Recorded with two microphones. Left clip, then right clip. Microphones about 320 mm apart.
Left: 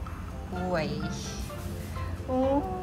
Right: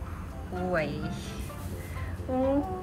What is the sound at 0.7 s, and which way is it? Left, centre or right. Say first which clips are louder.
Speech: right 1 dB; centre.